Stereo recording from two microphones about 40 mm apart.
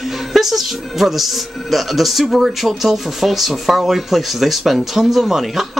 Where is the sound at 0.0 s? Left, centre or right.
Centre.